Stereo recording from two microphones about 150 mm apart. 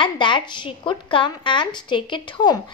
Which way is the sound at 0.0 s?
30° left (ahead or behind).